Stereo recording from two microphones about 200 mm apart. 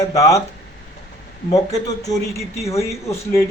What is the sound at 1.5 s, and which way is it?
Speech, 15° left (ahead or behind).